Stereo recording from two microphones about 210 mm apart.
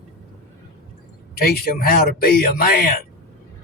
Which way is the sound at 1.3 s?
45° left (ahead or behind).